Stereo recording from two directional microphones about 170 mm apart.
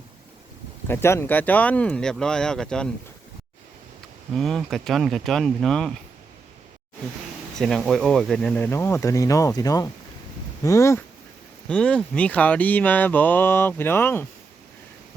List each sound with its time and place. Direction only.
0.9 s speech: 15° left (ahead or behind)
4.4 s speech: centre (ahead or behind)
7.6 s speech: centre (ahead or behind); by 11.0 s 15° left (ahead or behind)
11.7 s speech: 5° left (ahead or behind)